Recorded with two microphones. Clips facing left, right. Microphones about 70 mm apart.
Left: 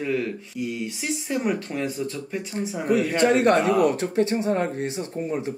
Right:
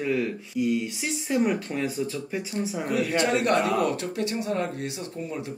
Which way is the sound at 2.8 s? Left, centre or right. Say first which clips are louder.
Left 5 dB; left.